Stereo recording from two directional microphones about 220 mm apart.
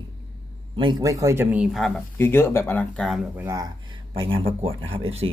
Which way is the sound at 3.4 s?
15° right (ahead or behind).